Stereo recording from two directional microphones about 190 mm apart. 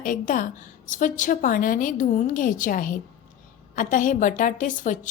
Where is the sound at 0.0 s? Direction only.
45° left (ahead or behind).